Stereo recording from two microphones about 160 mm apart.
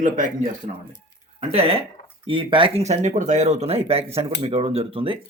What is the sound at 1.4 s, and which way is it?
Speech, 40° right (ahead or behind).